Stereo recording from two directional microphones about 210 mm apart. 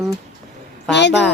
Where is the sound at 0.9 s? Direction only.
55° left (ahead or behind).